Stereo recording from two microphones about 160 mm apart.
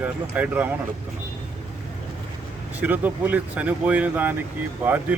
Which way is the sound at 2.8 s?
10° right (ahead or behind).